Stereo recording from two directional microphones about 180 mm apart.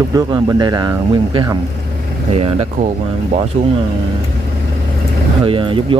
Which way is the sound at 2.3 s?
35° right (ahead or behind).